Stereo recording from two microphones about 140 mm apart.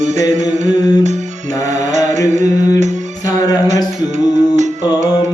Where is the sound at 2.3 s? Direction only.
55° right (ahead or behind).